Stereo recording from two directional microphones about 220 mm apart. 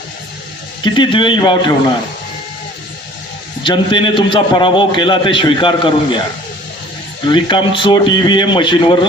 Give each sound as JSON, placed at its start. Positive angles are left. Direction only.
{"t": 0.9, "sound": "a man's voice", "side_deg": 20}
{"t": 3.6, "sound": "a man's voice", "side_deg": 20}
{"t": 7.3, "sound": "a man's voice", "side_deg": 20}